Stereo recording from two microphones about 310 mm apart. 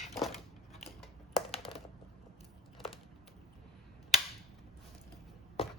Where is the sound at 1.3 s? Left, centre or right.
Centre.